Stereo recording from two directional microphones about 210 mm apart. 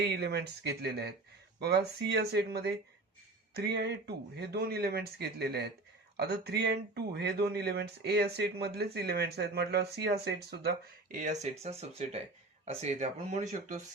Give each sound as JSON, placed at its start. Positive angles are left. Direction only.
{"t": 0.0, "sound": "speech", "side_deg": -50}